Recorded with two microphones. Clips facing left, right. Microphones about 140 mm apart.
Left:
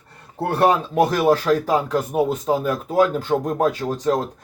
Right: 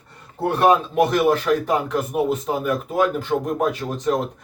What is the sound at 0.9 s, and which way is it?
Speech, 35° left (ahead or behind).